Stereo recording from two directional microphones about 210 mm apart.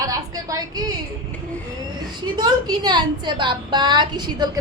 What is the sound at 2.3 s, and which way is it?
A woman's voice, 20° right (ahead or behind).